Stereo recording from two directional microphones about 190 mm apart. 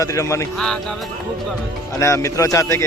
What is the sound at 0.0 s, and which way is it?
Speech, 15° left (ahead or behind).